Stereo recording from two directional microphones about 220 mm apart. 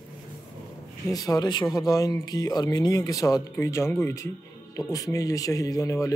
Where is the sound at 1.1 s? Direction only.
15° left (ahead or behind).